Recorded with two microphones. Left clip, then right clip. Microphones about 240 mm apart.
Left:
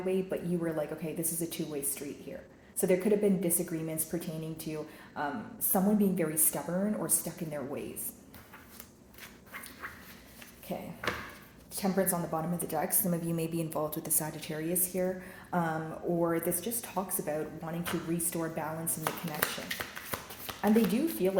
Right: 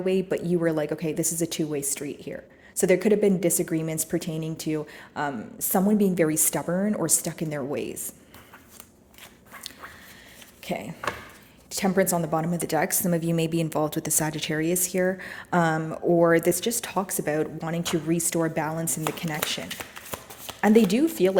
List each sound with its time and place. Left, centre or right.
0.0 s a woman's voice: right
10.7 s a woman's voice: right
19.4 s speech: right
20.6 s a woman's voice: right